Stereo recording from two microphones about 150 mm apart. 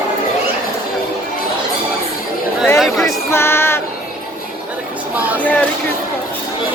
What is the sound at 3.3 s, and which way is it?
Child singing, 15° left (ahead or behind).